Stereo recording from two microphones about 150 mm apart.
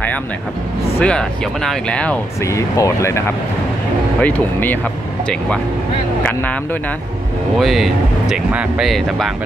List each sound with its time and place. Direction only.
0.9 s speech: 5° left (ahead or behind)
2.4 s speech: 20° left (ahead or behind)
6.2 s speech: 10° left (ahead or behind)
7.5 s speech: centre (ahead or behind)